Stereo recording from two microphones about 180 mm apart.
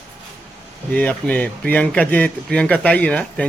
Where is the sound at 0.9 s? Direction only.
5° left (ahead or behind).